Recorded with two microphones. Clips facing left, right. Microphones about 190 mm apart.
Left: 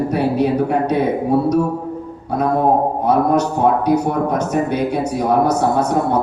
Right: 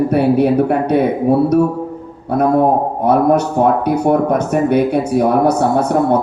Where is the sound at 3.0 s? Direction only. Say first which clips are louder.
Right 5 dB; 55° right (ahead or behind).